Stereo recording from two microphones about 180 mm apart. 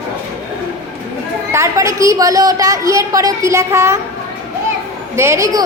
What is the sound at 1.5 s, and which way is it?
A woman's voice, 15° right (ahead or behind).